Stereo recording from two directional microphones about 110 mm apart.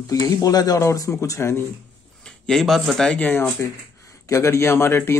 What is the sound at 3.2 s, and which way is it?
Speech, 20° left (ahead or behind).